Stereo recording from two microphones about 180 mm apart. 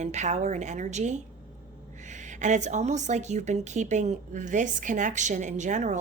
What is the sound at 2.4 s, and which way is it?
A woman's voice, 40° right (ahead or behind).